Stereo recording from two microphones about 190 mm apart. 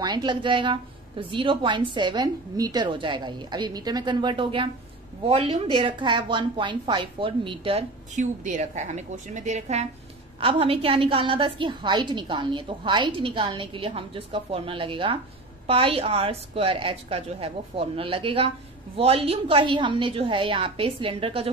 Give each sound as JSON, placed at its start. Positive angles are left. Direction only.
{"t": 0.0, "sound": "a woman's voice", "side_deg": -25}